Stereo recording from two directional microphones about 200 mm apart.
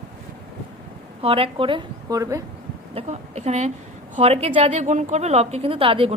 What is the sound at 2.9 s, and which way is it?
A woman's voice, 35° right (ahead or behind).